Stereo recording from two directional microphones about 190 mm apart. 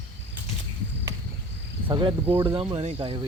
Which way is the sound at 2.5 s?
30° right (ahead or behind).